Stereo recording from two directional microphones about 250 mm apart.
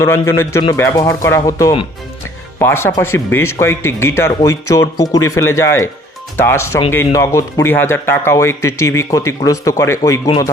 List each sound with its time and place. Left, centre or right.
0.0 s speech: centre